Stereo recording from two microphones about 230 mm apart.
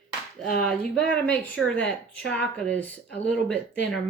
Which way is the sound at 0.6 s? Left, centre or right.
Centre.